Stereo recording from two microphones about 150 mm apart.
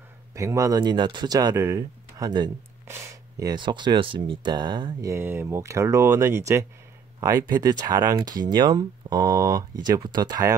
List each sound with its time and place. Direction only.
0.3 s speech: 20° right (ahead or behind)
5.1 s speech: 15° right (ahead or behind)